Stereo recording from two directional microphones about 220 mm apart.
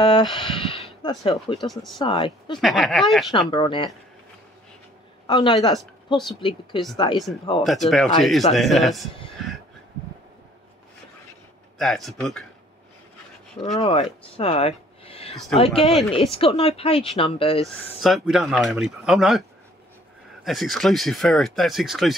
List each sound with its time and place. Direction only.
0.0 s speech: 20° left (ahead or behind)
1.6 s speech: centre (ahead or behind)
2.0 s speech: 25° left (ahead or behind)
2.6 s speech: centre (ahead or behind)
3.3 s speech: 20° left (ahead or behind)
5.2 s speech: 20° left (ahead or behind)
7.6 s speech: centre (ahead or behind)
9.4 s a sound: centre (ahead or behind)
11.8 s speech: centre (ahead or behind)
13.7 s speech: 30° left (ahead or behind)
18.0 s speech: centre (ahead or behind)
20.4 s speech: centre (ahead or behind)